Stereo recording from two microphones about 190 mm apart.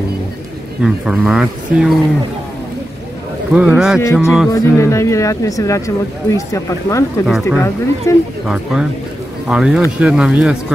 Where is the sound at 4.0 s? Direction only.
15° left (ahead or behind).